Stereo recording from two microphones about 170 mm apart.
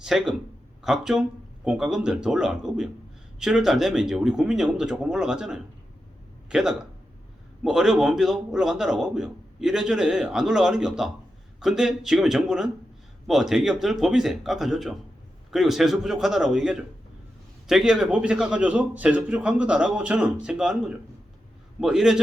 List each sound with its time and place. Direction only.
0.0 s a man's voice: 5° right (ahead or behind)